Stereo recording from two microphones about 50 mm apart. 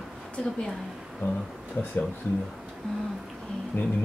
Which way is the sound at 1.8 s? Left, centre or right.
Left.